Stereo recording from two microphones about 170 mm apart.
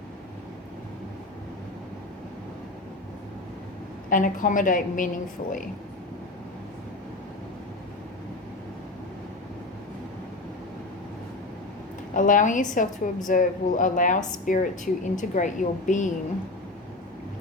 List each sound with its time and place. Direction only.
4.1 s a woman's voice: 50° left (ahead or behind)
12.1 s a woman's voice: 50° left (ahead or behind)